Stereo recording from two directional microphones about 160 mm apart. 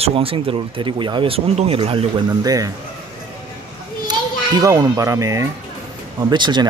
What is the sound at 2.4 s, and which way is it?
Speech, 25° right (ahead or behind).